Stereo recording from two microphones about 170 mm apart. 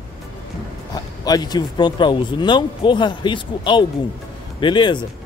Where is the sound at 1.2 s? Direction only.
25° left (ahead or behind).